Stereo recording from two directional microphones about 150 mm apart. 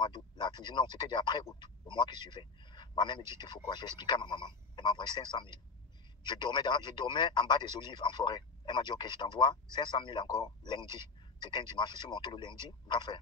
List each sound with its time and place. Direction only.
0.0 s speech: 30° left (ahead or behind)